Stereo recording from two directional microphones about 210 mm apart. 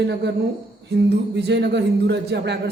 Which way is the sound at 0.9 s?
55° right (ahead or behind).